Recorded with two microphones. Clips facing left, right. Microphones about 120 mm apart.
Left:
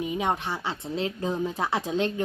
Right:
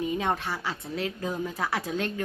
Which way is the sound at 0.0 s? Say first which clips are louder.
Left 1 dB; 20° left (ahead or behind).